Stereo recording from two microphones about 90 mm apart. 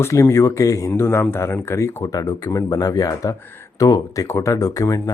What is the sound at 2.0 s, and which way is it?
Speech, 45° left (ahead or behind).